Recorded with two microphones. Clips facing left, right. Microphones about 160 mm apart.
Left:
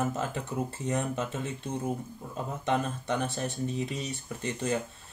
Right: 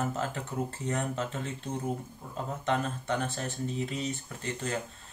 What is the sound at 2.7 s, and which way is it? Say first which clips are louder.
Speech: left 1 dB; 15° left (ahead or behind).